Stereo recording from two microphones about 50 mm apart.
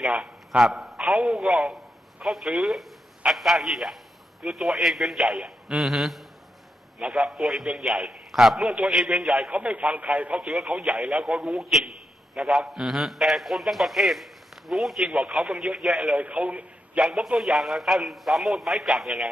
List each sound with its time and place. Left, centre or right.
0.2 s a man's voice: centre
9.5 s speech: right
10.4 s a man's voice: centre
16.2 s a man's voice: right
17.0 s a man's voice: centre